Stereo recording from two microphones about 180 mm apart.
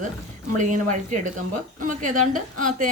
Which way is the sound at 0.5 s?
45° right (ahead or behind).